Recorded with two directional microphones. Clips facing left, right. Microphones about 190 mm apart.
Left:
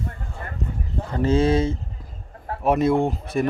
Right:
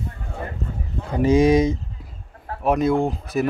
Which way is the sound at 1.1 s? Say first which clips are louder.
Right 4 dB; 15° right (ahead or behind).